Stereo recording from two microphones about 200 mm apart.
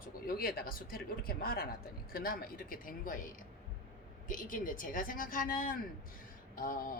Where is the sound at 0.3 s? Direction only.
45° left (ahead or behind).